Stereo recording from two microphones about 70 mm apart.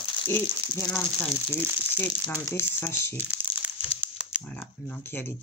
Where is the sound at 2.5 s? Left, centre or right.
Left.